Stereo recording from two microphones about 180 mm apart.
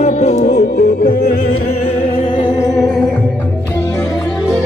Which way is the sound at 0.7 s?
55° left (ahead or behind).